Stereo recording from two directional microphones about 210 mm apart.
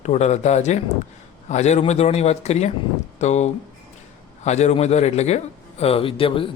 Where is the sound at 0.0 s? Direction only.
35° left (ahead or behind).